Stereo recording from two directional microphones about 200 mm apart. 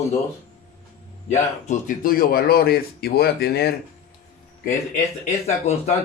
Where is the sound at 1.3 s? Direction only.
35° left (ahead or behind); by 3.8 s 50° left (ahead or behind).